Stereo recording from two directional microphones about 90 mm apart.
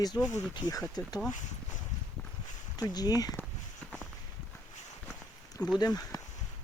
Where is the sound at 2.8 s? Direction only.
45° left (ahead or behind).